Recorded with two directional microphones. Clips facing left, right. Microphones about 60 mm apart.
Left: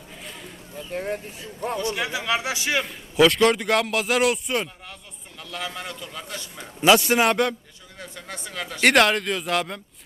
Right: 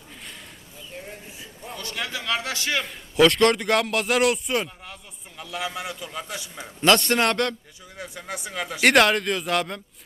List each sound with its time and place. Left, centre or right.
0.9 s speech: left
1.8 s a man's voice: centre
2.8 s a man's voice: centre
6.8 s a man's voice: centre
7.9 s a man's voice: centre
8.8 s a man's voice: centre